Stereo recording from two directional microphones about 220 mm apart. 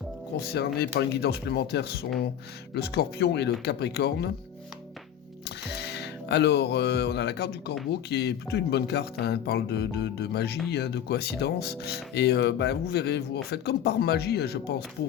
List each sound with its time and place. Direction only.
0.5 s speech: 50° left (ahead or behind)
5.5 s speech: 50° left (ahead or behind)